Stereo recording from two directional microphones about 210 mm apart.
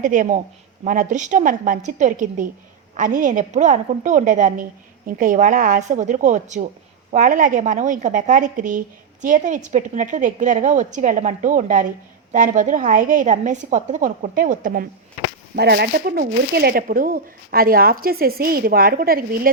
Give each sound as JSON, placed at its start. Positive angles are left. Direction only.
{"t": 0.0, "sound": "a woman's voice", "side_deg": -40}
{"t": 15.5, "sound": "speech", "side_deg": -50}